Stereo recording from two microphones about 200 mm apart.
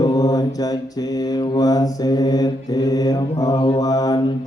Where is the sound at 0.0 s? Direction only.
20° left (ahead or behind).